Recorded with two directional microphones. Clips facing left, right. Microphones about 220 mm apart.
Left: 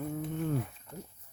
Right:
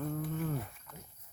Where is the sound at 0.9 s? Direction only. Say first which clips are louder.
Left 8 dB; 30° left (ahead or behind).